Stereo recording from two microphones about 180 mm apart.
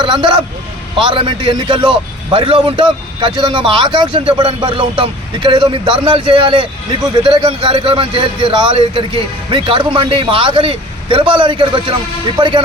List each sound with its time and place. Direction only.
0.0 s a man's voice: 25° right (ahead or behind)